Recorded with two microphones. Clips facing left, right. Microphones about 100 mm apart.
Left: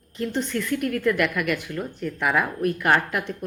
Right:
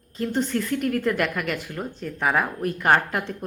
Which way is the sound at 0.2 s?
30° right (ahead or behind).